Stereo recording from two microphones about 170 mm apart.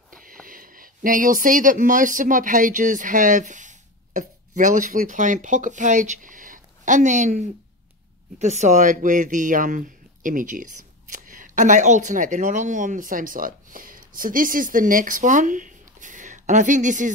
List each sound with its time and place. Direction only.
0.1 s speech: 55° right (ahead or behind)